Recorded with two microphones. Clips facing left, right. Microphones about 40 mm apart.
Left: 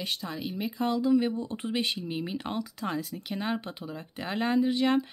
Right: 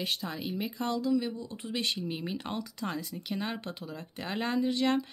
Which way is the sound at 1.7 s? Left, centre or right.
Centre.